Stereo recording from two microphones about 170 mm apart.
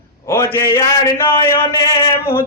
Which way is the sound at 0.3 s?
15° left (ahead or behind).